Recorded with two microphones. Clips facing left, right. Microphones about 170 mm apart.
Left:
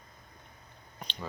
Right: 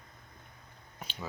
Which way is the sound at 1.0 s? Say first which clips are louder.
Left 1 dB; 5° right (ahead or behind).